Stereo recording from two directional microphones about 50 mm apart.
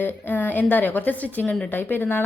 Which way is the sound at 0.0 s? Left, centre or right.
Left.